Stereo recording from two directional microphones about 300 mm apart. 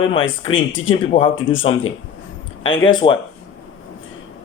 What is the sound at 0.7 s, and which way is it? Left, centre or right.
Speech, left.